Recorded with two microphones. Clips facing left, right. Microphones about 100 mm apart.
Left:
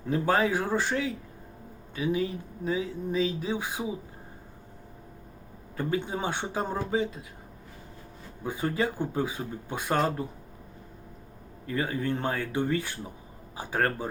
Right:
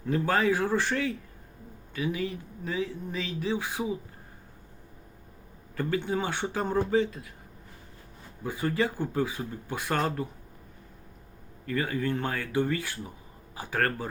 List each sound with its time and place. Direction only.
0.1 s speech: 20° left (ahead or behind)
5.7 s speech: 20° left (ahead or behind)
8.4 s speech: 20° left (ahead or behind)
11.6 s speech: 25° left (ahead or behind)